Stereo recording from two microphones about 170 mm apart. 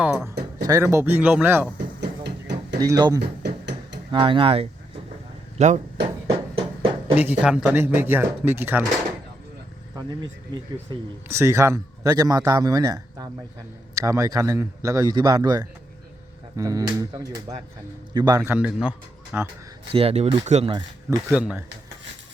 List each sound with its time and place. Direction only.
0.0 s music: 10° right (ahead or behind)
0.6 s speech: 20° right (ahead or behind)
2.0 s music: 80° right
2.7 s a man's voice: 20° right (ahead or behind)
3.2 s a sound: 90° right
4.1 s speech: 30° right (ahead or behind)
7.2 s speech: 10° right (ahead or behind)
9.9 s a man's voice: 25° right (ahead or behind); by 19.5 s 5° right (ahead or behind)
19.9 s speech: 35° right (ahead or behind)
21.2 s speech: 10° right (ahead or behind)